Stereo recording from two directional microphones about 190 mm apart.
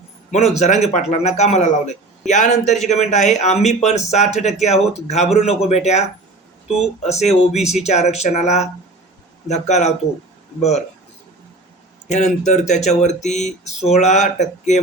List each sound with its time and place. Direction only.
0.3 s a man's voice: 35° left (ahead or behind)
12.0 s a man's voice: 40° left (ahead or behind)